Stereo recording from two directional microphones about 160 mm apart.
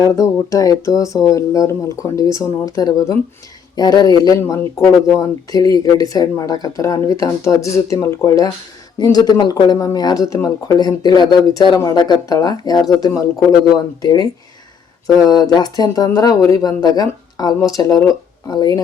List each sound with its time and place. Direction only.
0.0 s speech: 15° left (ahead or behind)